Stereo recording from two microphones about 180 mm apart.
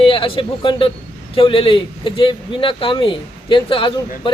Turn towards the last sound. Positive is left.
turn(degrees=25)  # may be behind; listen again after turning